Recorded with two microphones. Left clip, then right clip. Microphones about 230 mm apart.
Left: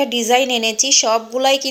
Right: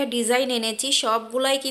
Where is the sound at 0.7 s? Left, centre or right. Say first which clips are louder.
Left 7 dB; right.